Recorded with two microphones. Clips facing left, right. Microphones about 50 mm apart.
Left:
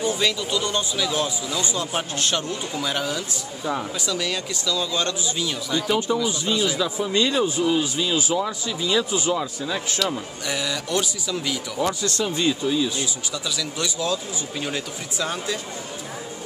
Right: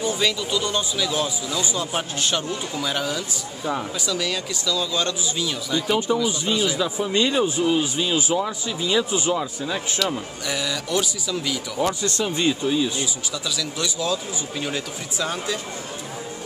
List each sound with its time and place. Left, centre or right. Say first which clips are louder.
0.0 s speech: even; centre
8.4 s speech: even; centre
9.9 s speech: even; centre
12.0 s speech: right 1 dB; centre
13.3 s speech: even; centre